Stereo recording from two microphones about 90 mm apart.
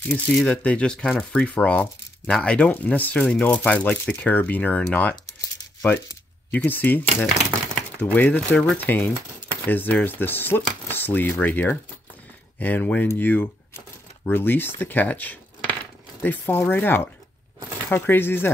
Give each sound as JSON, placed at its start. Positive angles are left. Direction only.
{"t": 0.5, "sound": "speech", "side_deg": 15}
{"t": 6.5, "sound": "speech", "side_deg": 20}
{"t": 7.2, "sound": "speech", "side_deg": 0}
{"t": 8.0, "sound": "speech", "side_deg": 20}
{"t": 8.7, "sound": "speech", "side_deg": 20}